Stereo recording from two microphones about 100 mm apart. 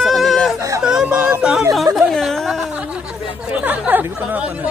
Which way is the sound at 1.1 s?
20° right (ahead or behind).